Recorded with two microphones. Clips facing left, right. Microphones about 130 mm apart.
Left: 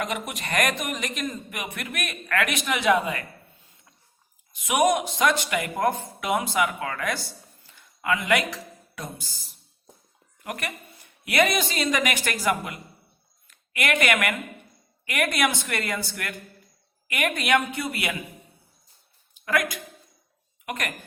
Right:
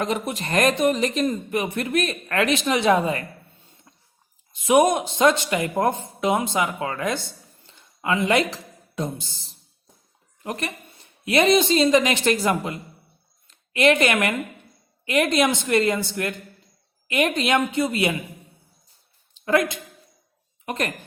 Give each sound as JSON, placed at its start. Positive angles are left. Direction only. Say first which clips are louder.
{"t": 0.0, "sound": "speech", "louder": "right 5 dB", "side_deg": -30}
{"t": 4.5, "sound": "a woman's voice", "louder": "right 4 dB", "side_deg": -30}
{"t": 19.3, "sound": "a sound", "louder": "right 5 dB", "side_deg": -25}
{"t": 20.7, "sound": "speech", "louder": "right 5 dB", "side_deg": -30}